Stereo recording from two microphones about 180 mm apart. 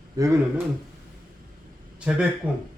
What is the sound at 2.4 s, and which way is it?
Speech, 10° right (ahead or behind).